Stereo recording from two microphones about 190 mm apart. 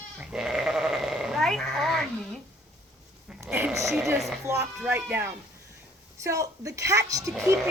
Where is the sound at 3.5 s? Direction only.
15° right (ahead or behind).